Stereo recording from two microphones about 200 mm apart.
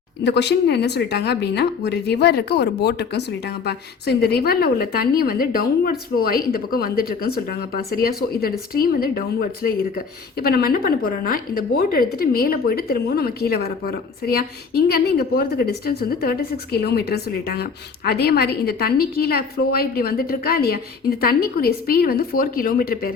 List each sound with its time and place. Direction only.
0.3 s speech: 60° left (ahead or behind)